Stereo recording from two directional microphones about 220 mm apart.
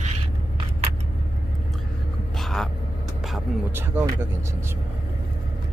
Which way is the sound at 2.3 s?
Centre (ahead or behind).